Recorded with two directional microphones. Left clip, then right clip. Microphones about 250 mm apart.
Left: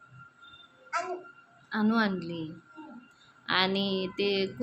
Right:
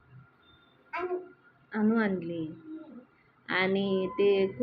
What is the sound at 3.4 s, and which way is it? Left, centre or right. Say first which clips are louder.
A woman's voice: left 1 dB; left.